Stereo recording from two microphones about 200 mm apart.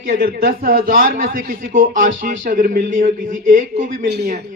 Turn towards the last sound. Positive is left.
turn(degrees=-55)  # may be behind; listen again after turning